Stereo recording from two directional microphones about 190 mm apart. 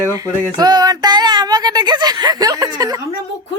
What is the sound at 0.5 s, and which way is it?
Speech, 20° right (ahead or behind).